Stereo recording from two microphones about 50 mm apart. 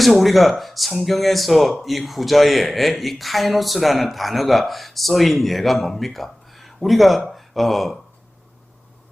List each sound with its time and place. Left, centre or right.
0.0 s speech: centre